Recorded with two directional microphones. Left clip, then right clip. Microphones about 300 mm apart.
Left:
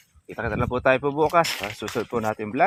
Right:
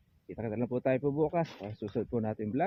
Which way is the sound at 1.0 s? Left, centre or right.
Left.